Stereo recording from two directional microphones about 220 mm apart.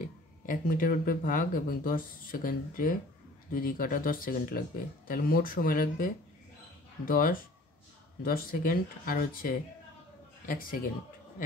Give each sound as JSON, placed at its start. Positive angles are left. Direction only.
{"t": 0.0, "sound": "speech", "side_deg": 40}